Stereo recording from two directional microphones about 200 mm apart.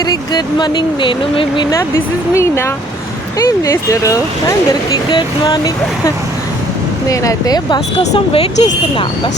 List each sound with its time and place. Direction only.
0.0 s speech: 20° left (ahead or behind)